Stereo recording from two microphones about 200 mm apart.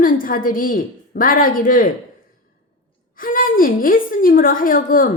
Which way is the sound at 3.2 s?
45° left (ahead or behind).